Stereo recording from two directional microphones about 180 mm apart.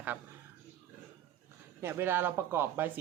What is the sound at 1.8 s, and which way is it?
Speech, 10° right (ahead or behind).